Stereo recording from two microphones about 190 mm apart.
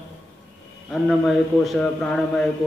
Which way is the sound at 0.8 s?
Centre (ahead or behind).